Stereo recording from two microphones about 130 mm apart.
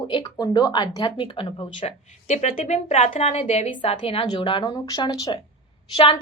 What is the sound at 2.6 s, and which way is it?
Speech, 60° left (ahead or behind).